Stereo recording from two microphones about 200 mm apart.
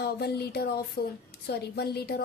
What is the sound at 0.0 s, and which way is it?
A woman's voice, 50° left (ahead or behind).